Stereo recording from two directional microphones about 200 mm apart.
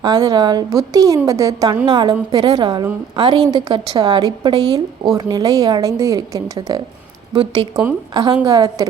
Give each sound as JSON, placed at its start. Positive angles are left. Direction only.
{"t": 0.0, "sound": "a woman's voice", "side_deg": -20}